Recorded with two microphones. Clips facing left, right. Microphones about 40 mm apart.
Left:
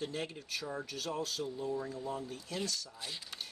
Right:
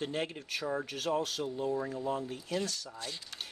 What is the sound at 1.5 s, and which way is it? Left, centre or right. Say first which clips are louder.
Speech: right 4 dB; right.